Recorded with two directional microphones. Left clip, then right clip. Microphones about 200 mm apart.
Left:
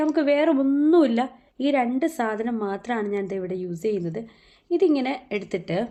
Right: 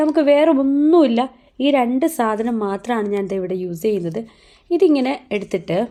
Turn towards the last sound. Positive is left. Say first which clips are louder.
# right 6 dB
turn(degrees=-30)  # may be behind; listen again after turning